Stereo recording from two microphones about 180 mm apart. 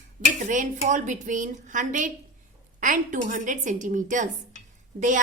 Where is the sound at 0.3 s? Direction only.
45° right (ahead or behind).